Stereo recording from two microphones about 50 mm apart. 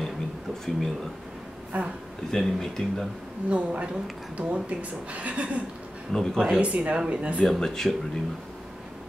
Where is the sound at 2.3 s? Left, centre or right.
Centre.